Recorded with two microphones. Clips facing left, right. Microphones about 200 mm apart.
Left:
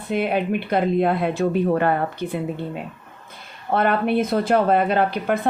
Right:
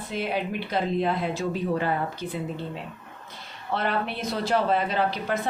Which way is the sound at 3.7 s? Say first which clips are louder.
Left 8 dB; 55° left (ahead or behind).